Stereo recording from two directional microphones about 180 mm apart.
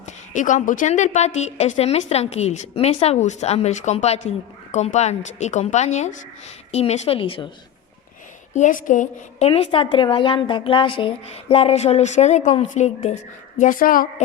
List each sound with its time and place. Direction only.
0.0 s a woman's voice: 45° left (ahead or behind)
8.5 s a woman's voice: 45° left (ahead or behind)
9.5 s a woman's voice: 30° left (ahead or behind); by 14.1 s 50° left (ahead or behind)